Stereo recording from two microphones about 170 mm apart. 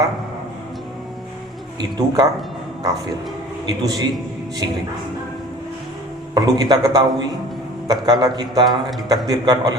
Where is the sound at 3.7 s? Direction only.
20° right (ahead or behind).